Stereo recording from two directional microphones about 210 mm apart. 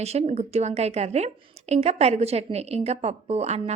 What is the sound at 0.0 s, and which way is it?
A woman's voice, 30° right (ahead or behind).